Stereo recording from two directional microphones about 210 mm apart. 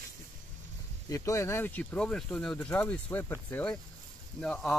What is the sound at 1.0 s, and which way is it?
Speech, 15° left (ahead or behind).